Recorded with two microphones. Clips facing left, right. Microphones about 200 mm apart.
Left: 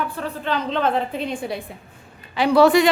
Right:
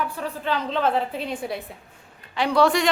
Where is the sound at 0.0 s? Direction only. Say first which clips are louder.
Left 1 dB; 10° right (ahead or behind).